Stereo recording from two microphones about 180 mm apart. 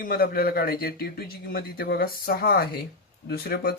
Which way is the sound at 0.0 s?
55° left (ahead or behind).